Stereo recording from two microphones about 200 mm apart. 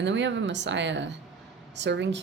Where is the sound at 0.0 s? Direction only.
65° right (ahead or behind).